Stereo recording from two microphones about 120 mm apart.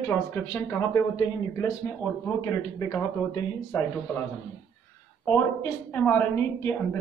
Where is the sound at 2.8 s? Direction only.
35° left (ahead or behind).